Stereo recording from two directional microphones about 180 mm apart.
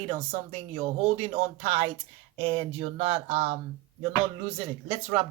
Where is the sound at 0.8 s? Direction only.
35° right (ahead or behind).